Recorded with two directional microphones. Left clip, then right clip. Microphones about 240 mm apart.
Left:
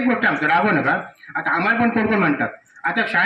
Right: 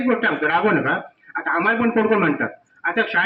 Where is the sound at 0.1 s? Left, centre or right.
Left.